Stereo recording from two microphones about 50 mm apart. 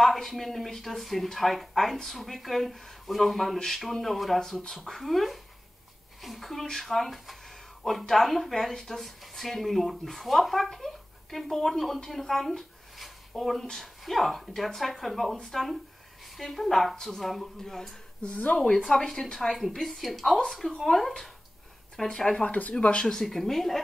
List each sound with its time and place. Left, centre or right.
0.0 s a woman's voice: centre
22.1 s speech: centre
22.4 s speech: left
23.0 s speech: centre